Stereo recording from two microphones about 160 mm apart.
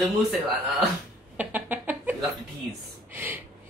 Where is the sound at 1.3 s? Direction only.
10° right (ahead or behind).